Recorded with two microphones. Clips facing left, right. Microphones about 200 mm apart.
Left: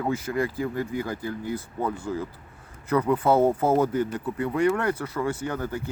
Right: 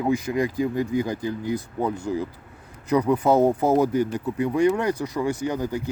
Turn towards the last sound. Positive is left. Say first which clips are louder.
# right 3 dB
turn(degrees=-15)  # may be behind; listen again after turning